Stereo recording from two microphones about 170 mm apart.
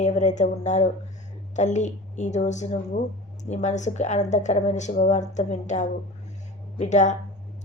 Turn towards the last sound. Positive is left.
turn(degrees=45)  # may be behind; listen again after turning